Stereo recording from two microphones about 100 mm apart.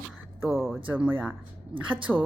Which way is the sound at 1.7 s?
60° right (ahead or behind).